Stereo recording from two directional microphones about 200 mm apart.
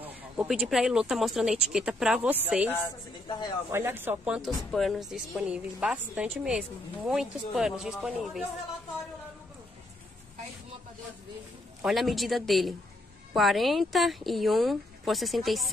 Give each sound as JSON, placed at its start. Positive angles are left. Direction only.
{"t": 0.0, "sound": "speech", "side_deg": -5}
{"t": 3.7, "sound": "speech", "side_deg": -10}
{"t": 11.8, "sound": "speech", "side_deg": 0}